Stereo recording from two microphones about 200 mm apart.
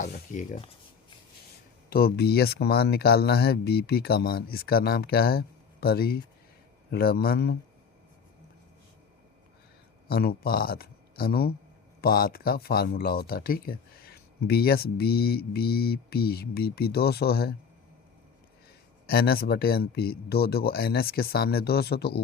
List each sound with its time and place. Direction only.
0.0 s speech: 40° left (ahead or behind)
1.9 s speech: 50° left (ahead or behind)
10.1 s speech: 50° left (ahead or behind)
19.0 s speech: 50° left (ahead or behind)